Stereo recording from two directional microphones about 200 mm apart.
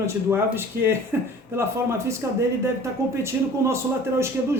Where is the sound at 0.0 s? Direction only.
10° right (ahead or behind).